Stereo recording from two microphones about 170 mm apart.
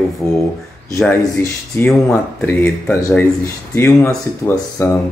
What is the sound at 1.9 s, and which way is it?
Speech, 5° left (ahead or behind).